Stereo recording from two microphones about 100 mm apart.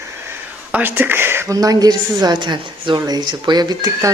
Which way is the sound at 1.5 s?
40° right (ahead or behind).